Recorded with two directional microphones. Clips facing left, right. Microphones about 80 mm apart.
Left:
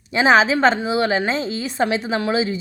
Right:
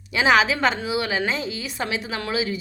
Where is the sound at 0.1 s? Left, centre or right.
Left.